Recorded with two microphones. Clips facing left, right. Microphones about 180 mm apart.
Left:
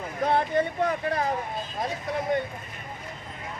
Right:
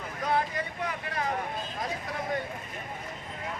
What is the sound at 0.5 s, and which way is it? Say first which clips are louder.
Speech: left 9 dB; 45° left (ahead or behind).